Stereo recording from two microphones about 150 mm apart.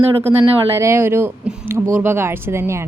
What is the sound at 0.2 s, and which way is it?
A woman's voice, 15° right (ahead or behind).